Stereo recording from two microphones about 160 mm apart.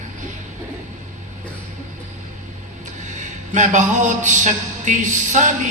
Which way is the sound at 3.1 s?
50° right (ahead or behind).